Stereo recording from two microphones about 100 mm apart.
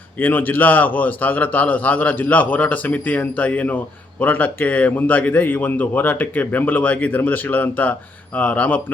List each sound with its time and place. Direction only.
0.2 s a man's voice: 20° left (ahead or behind)